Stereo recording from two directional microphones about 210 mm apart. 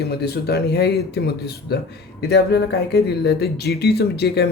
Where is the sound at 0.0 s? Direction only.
50° left (ahead or behind).